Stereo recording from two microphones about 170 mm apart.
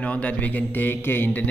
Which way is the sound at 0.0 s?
10° left (ahead or behind).